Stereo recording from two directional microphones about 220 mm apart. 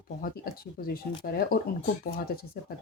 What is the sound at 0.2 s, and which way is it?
Speech, 40° left (ahead or behind).